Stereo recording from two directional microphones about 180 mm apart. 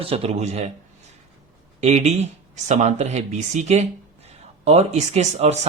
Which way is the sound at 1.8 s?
40° right (ahead or behind).